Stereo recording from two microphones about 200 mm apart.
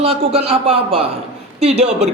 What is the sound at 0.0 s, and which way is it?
A man's voice, 30° right (ahead or behind).